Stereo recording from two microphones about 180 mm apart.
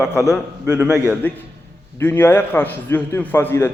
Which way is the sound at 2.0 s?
10° left (ahead or behind).